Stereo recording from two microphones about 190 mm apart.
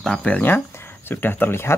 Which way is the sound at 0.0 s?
5° left (ahead or behind).